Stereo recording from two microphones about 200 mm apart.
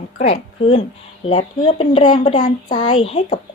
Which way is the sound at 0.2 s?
30° left (ahead or behind).